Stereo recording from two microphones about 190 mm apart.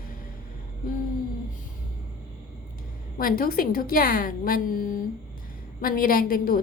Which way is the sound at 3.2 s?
50° left (ahead or behind).